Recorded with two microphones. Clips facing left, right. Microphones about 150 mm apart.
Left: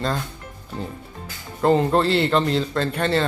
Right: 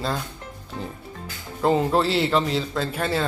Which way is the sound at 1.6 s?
Centre (ahead or behind).